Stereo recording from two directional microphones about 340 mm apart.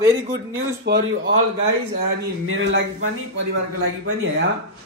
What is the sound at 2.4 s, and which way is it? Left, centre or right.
Speech, right.